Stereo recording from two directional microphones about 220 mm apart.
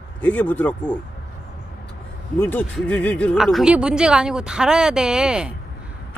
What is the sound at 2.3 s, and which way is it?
Speech, 10° left (ahead or behind).